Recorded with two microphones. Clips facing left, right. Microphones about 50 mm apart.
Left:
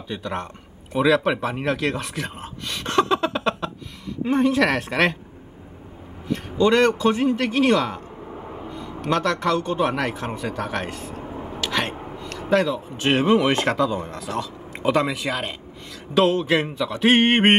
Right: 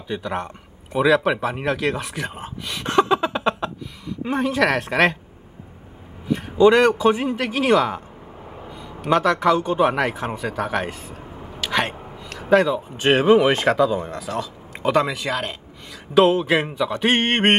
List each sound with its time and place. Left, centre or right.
0.1 s a man's voice: centre
6.2 s a man's voice: centre
11.2 s a sound: centre
11.6 s a man's voice: centre